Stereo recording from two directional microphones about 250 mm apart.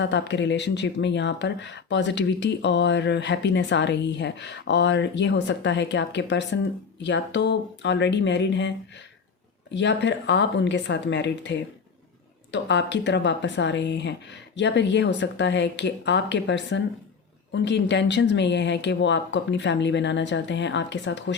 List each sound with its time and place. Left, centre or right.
0.0 s speech: left
9.7 s speech: left